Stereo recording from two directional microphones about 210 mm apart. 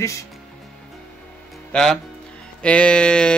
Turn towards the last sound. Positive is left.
turn(degrees=5)  # may be behind; listen again after turning